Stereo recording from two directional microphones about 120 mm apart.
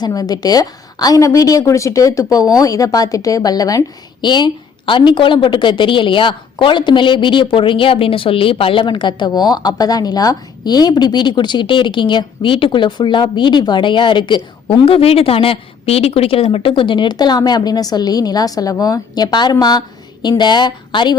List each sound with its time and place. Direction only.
0.0 s a woman's voice: 35° left (ahead or behind)